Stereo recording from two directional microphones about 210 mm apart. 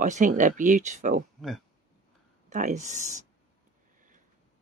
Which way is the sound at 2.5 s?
35° right (ahead or behind).